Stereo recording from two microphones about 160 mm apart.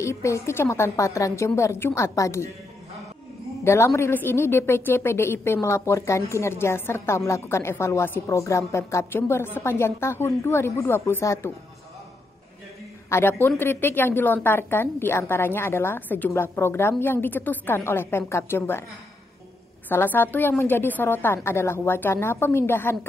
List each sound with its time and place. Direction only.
0.0 s a woman's voice: 20° left (ahead or behind)
3.6 s a woman's voice: 15° left (ahead or behind)
13.1 s a woman's voice: 15° left (ahead or behind)
19.9 s a woman's voice: 10° left (ahead or behind)